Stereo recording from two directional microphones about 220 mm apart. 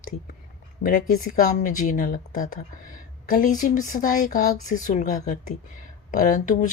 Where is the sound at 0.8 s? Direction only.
40° left (ahead or behind).